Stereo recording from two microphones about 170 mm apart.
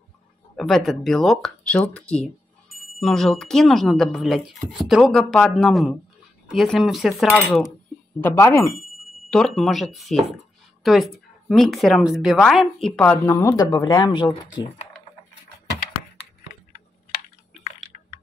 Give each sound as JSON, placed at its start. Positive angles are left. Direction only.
{"t": 0.6, "sound": "speech", "side_deg": 0}
{"t": 8.2, "sound": "speech", "side_deg": 10}
{"t": 8.7, "sound": "a sound", "side_deg": 0}
{"t": 9.6, "sound": "speech", "side_deg": 0}